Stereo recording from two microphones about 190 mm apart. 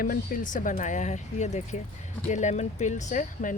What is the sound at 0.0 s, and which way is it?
Speech, 45° left (ahead or behind).